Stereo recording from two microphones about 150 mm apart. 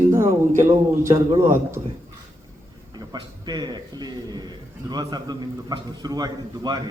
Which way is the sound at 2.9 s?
25° right (ahead or behind).